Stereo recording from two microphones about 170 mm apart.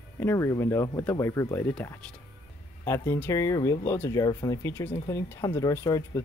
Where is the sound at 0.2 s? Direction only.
15° left (ahead or behind).